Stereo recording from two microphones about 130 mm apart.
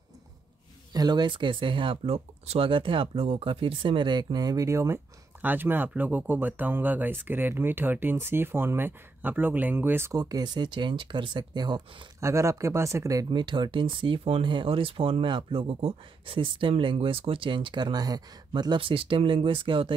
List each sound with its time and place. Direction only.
0.9 s speech: 35° right (ahead or behind); by 2.7 s 50° right (ahead or behind)
2.7 s speech: 40° right (ahead or behind); by 10.1 s 15° right (ahead or behind)
10.1 s speech: 30° right (ahead or behind)
12.2 s speech: 20° right (ahead or behind); by 20.0 s 40° right (ahead or behind)